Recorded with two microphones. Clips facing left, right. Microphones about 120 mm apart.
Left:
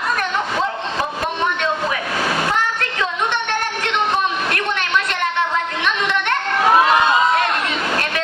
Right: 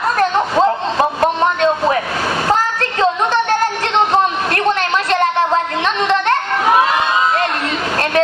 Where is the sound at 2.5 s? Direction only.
35° right (ahead or behind).